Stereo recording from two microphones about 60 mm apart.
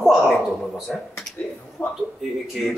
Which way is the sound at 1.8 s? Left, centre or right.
Left.